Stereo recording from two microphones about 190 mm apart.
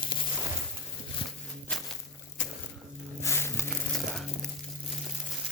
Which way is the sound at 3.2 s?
15° left (ahead or behind).